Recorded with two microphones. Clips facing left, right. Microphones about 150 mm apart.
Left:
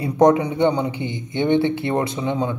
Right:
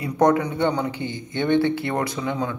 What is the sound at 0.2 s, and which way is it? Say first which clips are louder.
A man's voice: left 4 dB; 20° left (ahead or behind).